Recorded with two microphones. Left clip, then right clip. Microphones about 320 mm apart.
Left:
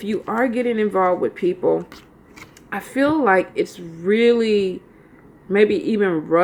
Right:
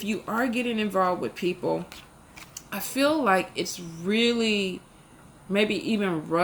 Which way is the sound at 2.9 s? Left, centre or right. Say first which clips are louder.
Left 6 dB; centre.